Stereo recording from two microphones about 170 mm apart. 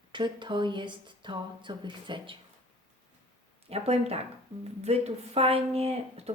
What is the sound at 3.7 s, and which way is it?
Speech, 35° right (ahead or behind).